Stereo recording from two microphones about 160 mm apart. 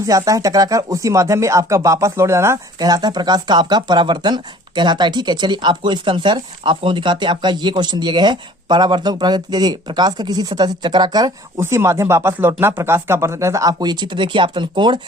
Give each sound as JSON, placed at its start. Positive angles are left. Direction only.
{"t": 0.0, "sound": "speech", "side_deg": -20}